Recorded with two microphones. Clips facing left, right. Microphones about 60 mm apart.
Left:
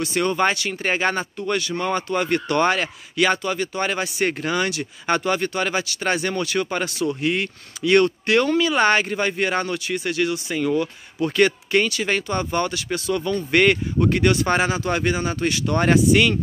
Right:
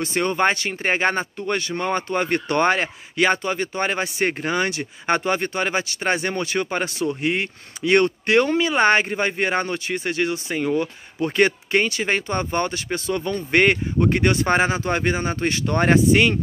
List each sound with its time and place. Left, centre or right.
0.0 s a man's voice: right